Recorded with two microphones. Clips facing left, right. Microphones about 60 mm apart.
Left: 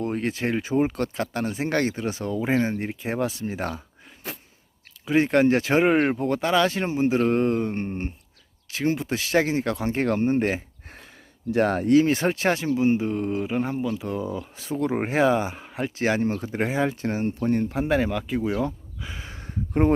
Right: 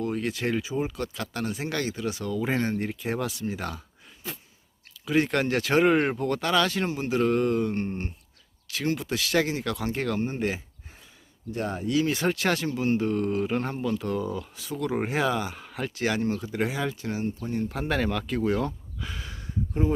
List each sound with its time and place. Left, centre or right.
0.0 s speech: left
0.6 s speech: left
1.1 s speech: left
2.5 s speech: centre
5.0 s speech: left
11.5 s speech: left
11.9 s speech: left; by 14.4 s centre
14.5 s speech: left
17.7 s speech: centre